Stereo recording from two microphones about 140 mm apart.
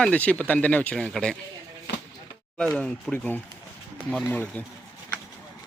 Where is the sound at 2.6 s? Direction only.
5° left (ahead or behind).